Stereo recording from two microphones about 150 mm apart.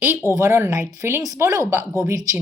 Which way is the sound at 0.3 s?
20° right (ahead or behind).